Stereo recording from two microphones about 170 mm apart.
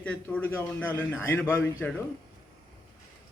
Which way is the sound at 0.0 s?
10° left (ahead or behind).